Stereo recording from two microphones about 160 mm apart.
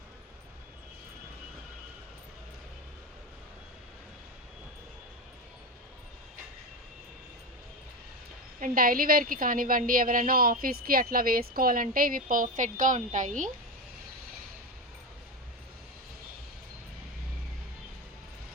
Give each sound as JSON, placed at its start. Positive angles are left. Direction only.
{"t": 8.6, "sound": "a woman's voice", "side_deg": -65}